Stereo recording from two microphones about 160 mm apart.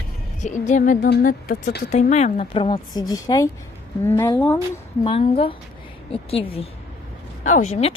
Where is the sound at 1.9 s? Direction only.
45° left (ahead or behind); by 4.4 s 20° left (ahead or behind).